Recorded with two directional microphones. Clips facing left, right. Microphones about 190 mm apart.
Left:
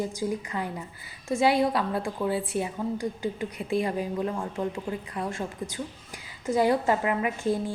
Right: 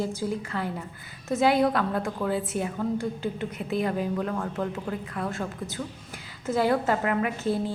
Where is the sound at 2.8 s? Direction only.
15° left (ahead or behind).